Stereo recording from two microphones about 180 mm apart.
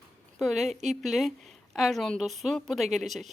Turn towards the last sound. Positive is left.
turn(degrees=0)  # may be behind; listen again after turning